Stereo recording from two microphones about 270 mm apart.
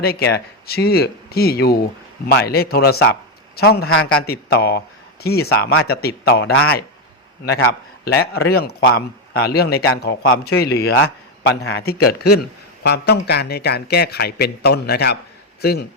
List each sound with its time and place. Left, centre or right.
0.0 s a man's voice: left